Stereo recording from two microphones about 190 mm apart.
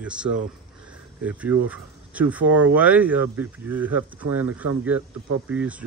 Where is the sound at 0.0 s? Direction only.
5° right (ahead or behind).